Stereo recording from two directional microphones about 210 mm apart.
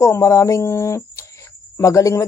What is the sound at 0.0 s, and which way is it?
Speech, 15° left (ahead or behind).